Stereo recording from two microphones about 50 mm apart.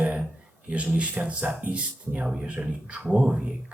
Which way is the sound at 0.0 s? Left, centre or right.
Right.